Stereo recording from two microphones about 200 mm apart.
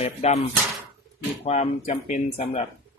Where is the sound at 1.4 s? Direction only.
30° left (ahead or behind).